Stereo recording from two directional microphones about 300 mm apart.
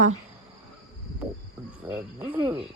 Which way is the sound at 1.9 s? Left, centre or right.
Centre.